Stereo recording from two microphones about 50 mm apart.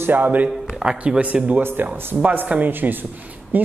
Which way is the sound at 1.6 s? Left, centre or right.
Right.